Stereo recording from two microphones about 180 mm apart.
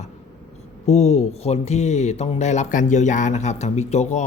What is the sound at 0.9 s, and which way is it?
Speech, 40° left (ahead or behind).